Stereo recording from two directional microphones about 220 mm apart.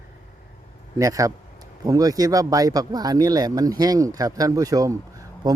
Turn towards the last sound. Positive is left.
turn(degrees=-15)  # may be behind; listen again after turning